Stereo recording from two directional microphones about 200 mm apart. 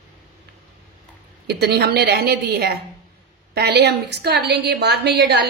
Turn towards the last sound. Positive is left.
turn(degrees=-55)  # may be behind; listen again after turning